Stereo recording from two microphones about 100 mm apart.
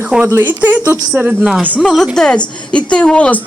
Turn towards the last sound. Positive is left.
turn(degrees=10)  # may be behind; listen again after turning